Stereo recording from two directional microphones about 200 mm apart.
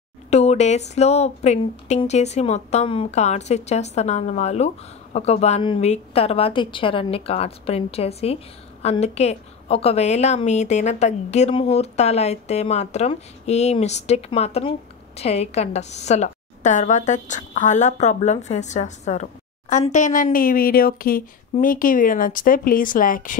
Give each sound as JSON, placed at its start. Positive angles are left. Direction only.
{"t": 0.3, "sound": "a woman's voice", "side_deg": 35}